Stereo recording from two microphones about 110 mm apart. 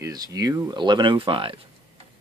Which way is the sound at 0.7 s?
45° right (ahead or behind).